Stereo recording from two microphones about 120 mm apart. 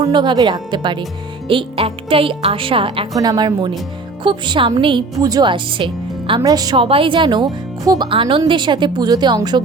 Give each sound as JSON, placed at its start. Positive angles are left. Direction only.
{"t": 0.0, "sound": "speech", "side_deg": -40}
{"t": 3.2, "sound": "speech", "side_deg": -35}
{"t": 5.2, "sound": "speech", "side_deg": -35}
{"t": 6.4, "sound": "speech", "side_deg": -35}
{"t": 6.7, "sound": "speech", "side_deg": -50}